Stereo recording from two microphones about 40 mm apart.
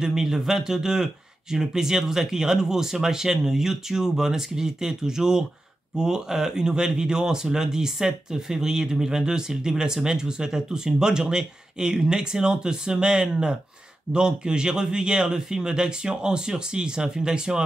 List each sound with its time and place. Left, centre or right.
0.0 s a man's voice: centre